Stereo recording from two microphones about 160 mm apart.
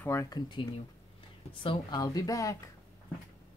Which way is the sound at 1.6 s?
25° left (ahead or behind).